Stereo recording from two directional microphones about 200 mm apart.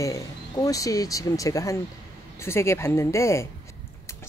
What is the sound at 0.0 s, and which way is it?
Speech, 15° left (ahead or behind).